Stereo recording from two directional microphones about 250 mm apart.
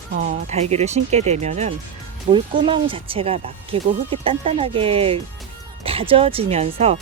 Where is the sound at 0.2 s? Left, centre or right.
Right.